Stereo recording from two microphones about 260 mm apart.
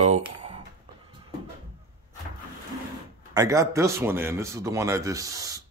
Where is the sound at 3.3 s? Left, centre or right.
Centre.